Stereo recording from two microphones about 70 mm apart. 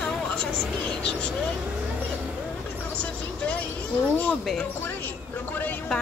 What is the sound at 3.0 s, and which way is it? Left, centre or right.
Vehicle, centre.